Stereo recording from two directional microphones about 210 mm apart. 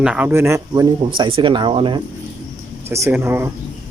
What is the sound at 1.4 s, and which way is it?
Speech, 25° right (ahead or behind).